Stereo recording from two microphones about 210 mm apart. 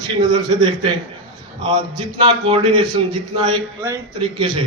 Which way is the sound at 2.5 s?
20° right (ahead or behind).